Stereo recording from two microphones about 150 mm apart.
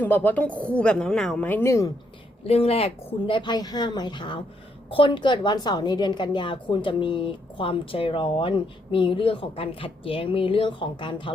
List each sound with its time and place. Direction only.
0.0 s a woman's voice: 10° left (ahead or behind)
2.4 s a woman's voice: 40° left (ahead or behind)